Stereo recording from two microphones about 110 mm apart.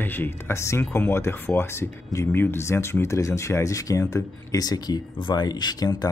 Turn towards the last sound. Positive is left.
turn(degrees=35)  # may be behind; listen again after turning